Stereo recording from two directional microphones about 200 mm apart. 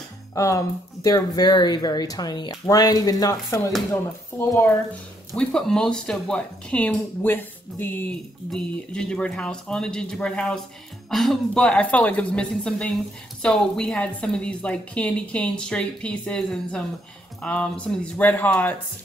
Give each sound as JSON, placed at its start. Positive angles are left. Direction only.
{"t": 0.3, "sound": "speech", "side_deg": 15}